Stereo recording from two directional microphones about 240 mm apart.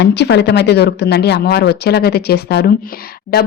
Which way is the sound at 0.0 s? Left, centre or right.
Left.